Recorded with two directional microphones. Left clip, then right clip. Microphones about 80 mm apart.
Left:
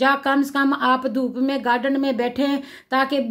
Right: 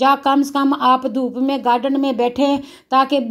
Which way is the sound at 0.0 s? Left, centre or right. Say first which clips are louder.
Right 4 dB; right.